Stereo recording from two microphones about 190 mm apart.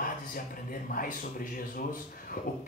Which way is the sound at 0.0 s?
45° left (ahead or behind).